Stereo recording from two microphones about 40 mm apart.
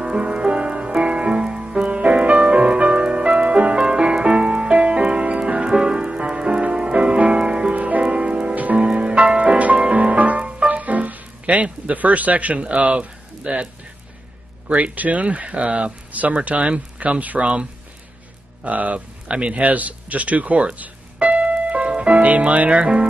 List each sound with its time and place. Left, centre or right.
0.0 s music: right
8.5 s music: right
8.8 s music: right
14.7 s speech: right